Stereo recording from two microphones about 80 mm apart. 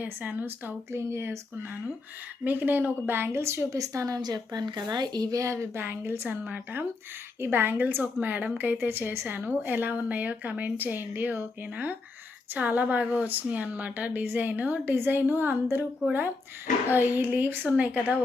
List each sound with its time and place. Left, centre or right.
0.0 s a woman's voice: right
4.2 s speech: right
5.4 s a woman's voice: right
7.4 s a woman's voice: right
17.2 s a woman's voice: right